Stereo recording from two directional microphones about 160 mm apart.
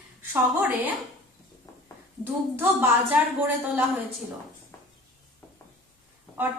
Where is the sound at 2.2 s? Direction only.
10° right (ahead or behind).